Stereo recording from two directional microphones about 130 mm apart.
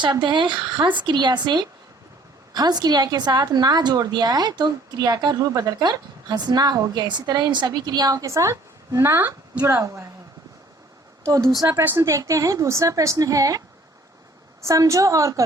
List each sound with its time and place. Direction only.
0.0 s a woman's voice: 35° right (ahead or behind)
11.3 s a woman's voice: 25° right (ahead or behind)
14.6 s a woman's voice: 25° right (ahead or behind)